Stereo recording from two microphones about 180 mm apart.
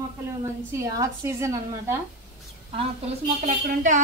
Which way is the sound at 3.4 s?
45° right (ahead or behind).